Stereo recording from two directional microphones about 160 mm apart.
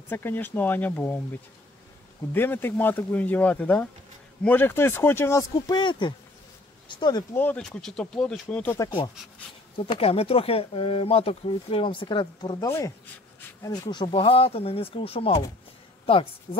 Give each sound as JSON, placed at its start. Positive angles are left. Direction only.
{"t": 0.1, "sound": "speech", "side_deg": 15}
{"t": 2.3, "sound": "speech", "side_deg": 15}
{"t": 7.3, "sound": "speech", "side_deg": 10}
{"t": 9.8, "sound": "speech", "side_deg": 35}
{"t": 12.6, "sound": "speech", "side_deg": 15}